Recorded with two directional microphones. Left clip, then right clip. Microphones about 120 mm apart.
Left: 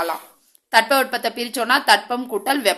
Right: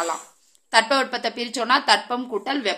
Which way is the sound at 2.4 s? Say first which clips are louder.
Left 5 dB; 40° left (ahead or behind).